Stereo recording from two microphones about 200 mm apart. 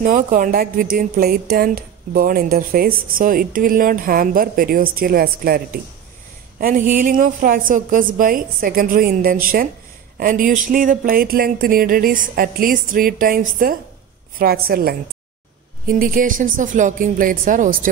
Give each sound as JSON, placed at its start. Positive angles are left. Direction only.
{"t": 0.0, "sound": "speech", "side_deg": -40}
{"t": 16.0, "sound": "speech", "side_deg": -45}